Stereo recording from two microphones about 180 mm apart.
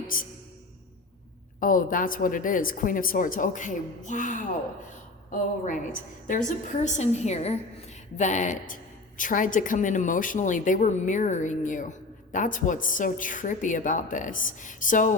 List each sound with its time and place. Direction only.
0.1 s a woman's voice: 50° left (ahead or behind)
1.5 s a woman's voice: 50° left (ahead or behind)